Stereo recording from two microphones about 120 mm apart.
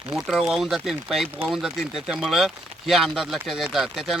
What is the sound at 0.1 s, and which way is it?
Speech, centre (ahead or behind).